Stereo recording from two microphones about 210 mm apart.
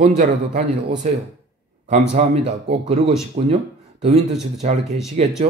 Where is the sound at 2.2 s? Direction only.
30° right (ahead or behind).